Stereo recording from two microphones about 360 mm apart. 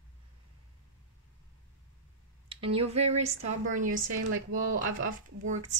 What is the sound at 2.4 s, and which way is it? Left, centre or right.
A woman's voice, centre.